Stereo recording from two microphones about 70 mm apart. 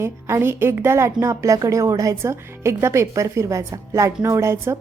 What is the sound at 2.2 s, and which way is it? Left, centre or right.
A woman's voice, right.